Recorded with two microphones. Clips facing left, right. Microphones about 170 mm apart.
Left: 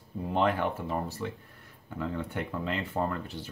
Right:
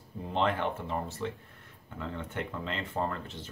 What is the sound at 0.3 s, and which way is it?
Speech, 10° left (ahead or behind).